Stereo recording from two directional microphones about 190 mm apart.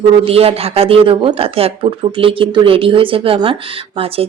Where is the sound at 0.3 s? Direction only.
30° right (ahead or behind).